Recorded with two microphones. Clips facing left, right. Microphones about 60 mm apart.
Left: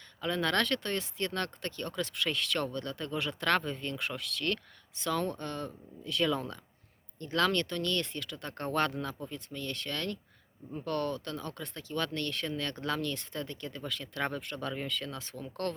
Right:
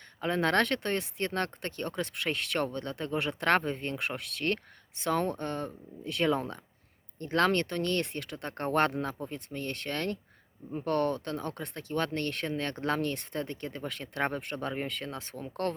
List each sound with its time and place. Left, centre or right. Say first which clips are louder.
0.2 s speech: right 3 dB; right